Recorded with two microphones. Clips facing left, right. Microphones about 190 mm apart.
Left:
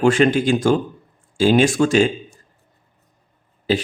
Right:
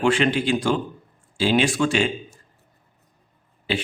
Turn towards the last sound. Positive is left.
turn(degrees=40)  # may be behind; listen again after turning